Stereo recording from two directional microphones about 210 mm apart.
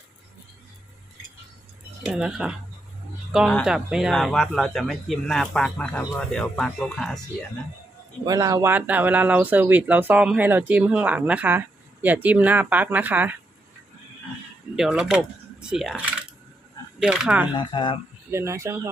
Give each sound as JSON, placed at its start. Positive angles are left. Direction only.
{"t": 2.0, "sound": "speech", "side_deg": -5}
{"t": 8.2, "sound": "speech", "side_deg": -15}
{"t": 14.8, "sound": "speech", "side_deg": -5}
{"t": 17.5, "sound": "speech", "side_deg": 20}
{"t": 18.3, "sound": "speech", "side_deg": -15}